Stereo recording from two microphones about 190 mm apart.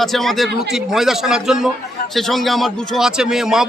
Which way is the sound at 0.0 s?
Centre (ahead or behind).